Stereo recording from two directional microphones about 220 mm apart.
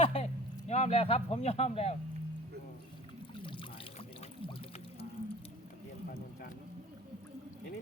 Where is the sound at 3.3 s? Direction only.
20° left (ahead or behind).